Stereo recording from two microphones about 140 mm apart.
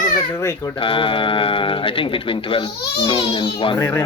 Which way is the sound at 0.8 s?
40° left (ahead or behind).